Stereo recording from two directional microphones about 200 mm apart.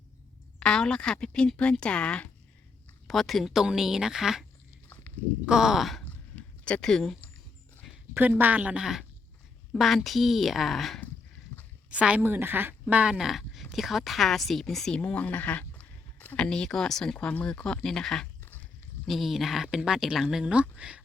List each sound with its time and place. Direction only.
0.6 s speech: 5° left (ahead or behind)
5.5 s a sound: centre (ahead or behind)
7.9 s a woman's voice: 10° right (ahead or behind)